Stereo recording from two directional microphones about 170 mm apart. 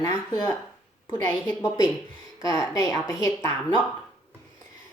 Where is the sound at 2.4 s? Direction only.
20° left (ahead or behind).